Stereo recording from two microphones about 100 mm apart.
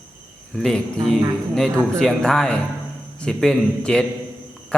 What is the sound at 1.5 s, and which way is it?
A man's voice, 5° left (ahead or behind).